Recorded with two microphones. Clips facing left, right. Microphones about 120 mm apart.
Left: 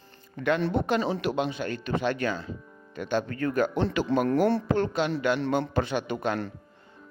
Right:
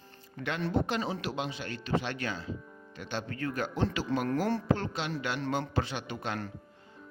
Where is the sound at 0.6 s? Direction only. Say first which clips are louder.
Left 5 dB; 70° left (ahead or behind).